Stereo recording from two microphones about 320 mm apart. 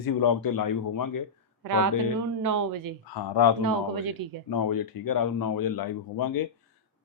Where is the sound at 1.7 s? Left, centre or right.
Right.